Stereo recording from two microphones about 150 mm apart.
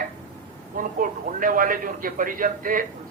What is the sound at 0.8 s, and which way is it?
A man's voice, 65° right (ahead or behind).